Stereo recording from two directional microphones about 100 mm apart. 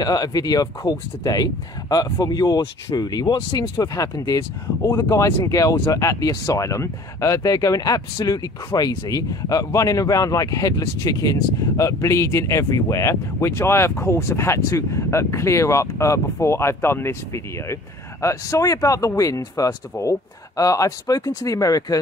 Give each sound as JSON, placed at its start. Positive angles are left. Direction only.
{"t": 0.0, "sound": "speech", "side_deg": 40}